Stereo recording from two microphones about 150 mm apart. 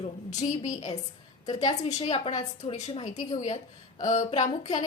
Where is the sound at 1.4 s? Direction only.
30° left (ahead or behind).